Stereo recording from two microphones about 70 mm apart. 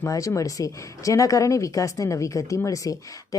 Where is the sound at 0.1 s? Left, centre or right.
Left.